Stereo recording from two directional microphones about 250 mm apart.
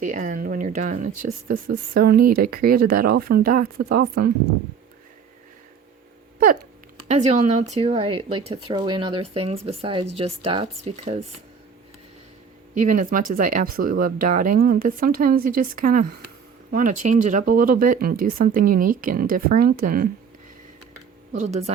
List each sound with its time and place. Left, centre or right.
0.0 s speech: right
7.1 s speech: right
12.7 s speech: right
21.3 s speech: right